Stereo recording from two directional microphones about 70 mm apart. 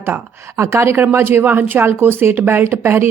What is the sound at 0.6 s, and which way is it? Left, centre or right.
Speech, right.